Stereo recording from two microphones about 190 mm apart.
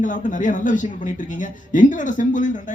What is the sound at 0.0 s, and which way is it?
Speech, 40° left (ahead or behind).